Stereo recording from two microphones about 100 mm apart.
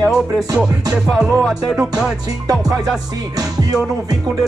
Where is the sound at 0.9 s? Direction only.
5° right (ahead or behind).